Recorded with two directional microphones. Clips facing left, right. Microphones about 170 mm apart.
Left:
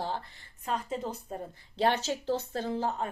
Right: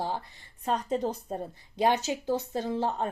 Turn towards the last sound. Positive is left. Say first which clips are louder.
# right 2 dB
turn(degrees=-30)  # may be behind; listen again after turning